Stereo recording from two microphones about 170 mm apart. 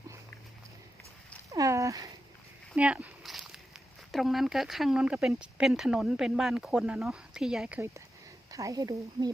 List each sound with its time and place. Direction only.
1.5 s cat: 20° right (ahead or behind)
2.7 s a sound: 10° right (ahead or behind)
4.1 s speech: centre (ahead or behind)
8.4 s speech: 20° right (ahead or behind)